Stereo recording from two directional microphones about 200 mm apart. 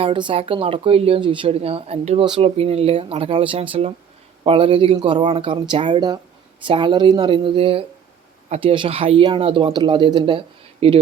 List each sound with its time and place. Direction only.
0.0 s speech: 25° right (ahead or behind)